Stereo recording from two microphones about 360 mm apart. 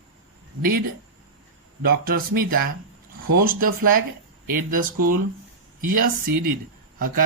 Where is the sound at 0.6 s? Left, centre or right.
Right.